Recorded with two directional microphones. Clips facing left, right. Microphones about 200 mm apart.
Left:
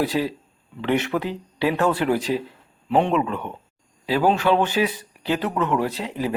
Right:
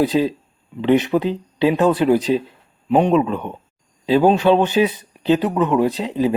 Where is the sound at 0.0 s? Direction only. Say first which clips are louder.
Right 6 dB; 20° right (ahead or behind).